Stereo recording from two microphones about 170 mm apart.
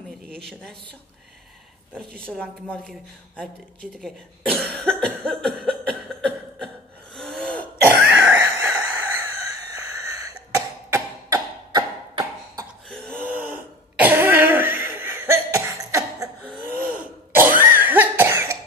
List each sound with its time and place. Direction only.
0.3 s speech: 5° left (ahead or behind)
2.0 s a woman's voice: 5° left (ahead or behind)
7.2 s throat clearing: 5° left (ahead or behind)
8.2 s a sound: 15° right (ahead or behind)
12.8 s a sound: 5° left (ahead or behind)
13.2 s throat clearing: 10° right (ahead or behind)
17.6 s cough: 10° right (ahead or behind)